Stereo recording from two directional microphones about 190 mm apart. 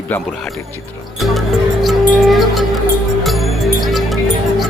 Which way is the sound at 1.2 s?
Centre (ahead or behind).